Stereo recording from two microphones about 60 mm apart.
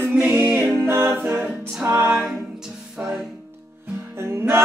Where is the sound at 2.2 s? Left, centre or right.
Centre.